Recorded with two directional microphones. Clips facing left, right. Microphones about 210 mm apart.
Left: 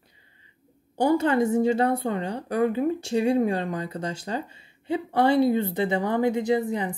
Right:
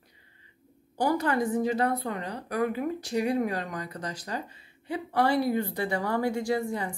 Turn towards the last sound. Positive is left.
turn(degrees=20)  # may be behind; listen again after turning